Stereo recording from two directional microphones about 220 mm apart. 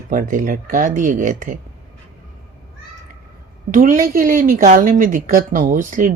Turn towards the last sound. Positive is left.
turn(degrees=-35)  # may be behind; listen again after turning